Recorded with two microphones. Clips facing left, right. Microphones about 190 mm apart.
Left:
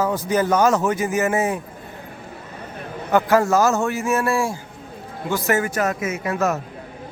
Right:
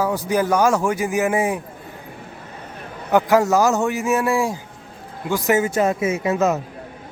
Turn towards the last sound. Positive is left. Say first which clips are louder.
# right 3 dB
turn(degrees=-20)  # may be behind; listen again after turning